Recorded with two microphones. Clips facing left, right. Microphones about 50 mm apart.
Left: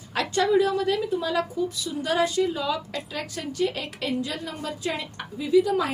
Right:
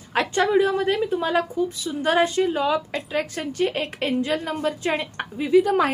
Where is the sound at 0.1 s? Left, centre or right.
Right.